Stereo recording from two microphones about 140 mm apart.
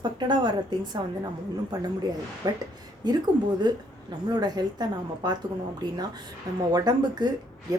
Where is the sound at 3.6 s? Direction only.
30° right (ahead or behind).